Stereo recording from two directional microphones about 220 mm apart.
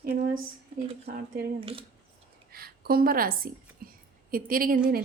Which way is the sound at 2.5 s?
45° right (ahead or behind).